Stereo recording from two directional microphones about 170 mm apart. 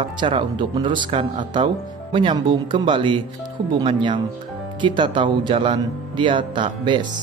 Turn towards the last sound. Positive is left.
turn(degrees=-30)  # may be behind; listen again after turning